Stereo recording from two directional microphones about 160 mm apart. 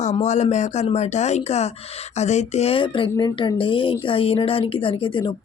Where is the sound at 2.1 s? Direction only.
45° left (ahead or behind).